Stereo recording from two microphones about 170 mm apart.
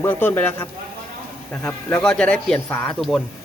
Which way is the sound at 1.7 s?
10° left (ahead or behind).